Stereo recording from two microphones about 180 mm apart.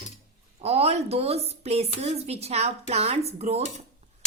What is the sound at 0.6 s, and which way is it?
A woman's voice, 35° right (ahead or behind).